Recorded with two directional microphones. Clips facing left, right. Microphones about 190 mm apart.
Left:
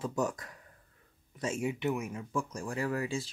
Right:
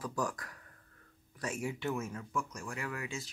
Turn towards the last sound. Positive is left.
turn(degrees=30)  # may be behind; listen again after turning